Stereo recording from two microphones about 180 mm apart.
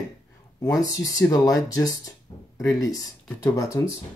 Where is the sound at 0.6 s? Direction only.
20° left (ahead or behind).